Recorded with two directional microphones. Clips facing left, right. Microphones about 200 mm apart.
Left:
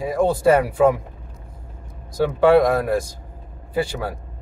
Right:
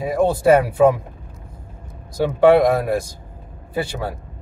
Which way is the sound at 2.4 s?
20° right (ahead or behind).